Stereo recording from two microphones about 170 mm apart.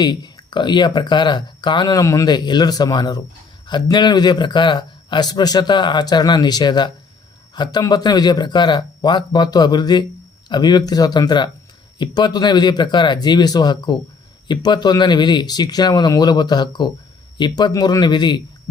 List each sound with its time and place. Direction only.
0.0 s speech: 25° left (ahead or behind)